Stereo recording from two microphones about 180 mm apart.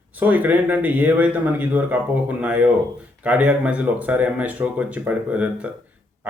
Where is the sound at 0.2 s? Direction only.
10° right (ahead or behind).